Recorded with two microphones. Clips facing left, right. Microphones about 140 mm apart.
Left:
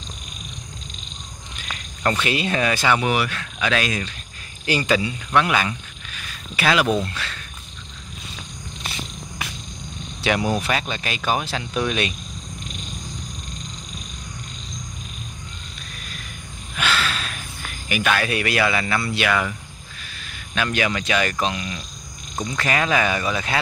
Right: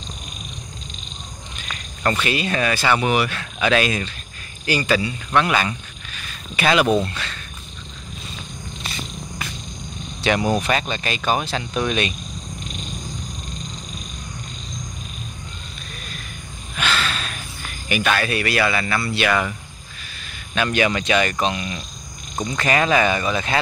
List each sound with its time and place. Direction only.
2.2 s speech: 20° left (ahead or behind)
3.0 s speech: centre (ahead or behind)
4.6 s speech: 20° left (ahead or behind); by 7.3 s centre (ahead or behind)
10.2 s speech: 5° left (ahead or behind)
16.7 s a sound: 5° left (ahead or behind)
17.8 s speech: 5° left (ahead or behind)
19.2 s speech: centre (ahead or behind)